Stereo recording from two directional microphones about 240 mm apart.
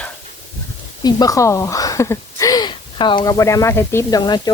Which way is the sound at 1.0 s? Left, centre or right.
Centre.